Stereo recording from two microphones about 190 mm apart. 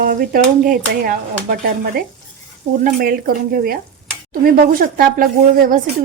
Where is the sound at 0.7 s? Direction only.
50° right (ahead or behind).